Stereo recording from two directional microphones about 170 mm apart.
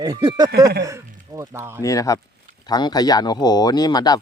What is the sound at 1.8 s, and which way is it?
Speech, 20° left (ahead or behind).